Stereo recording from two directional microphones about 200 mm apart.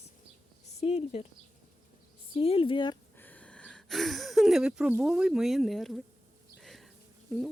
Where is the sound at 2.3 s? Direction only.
30° left (ahead or behind).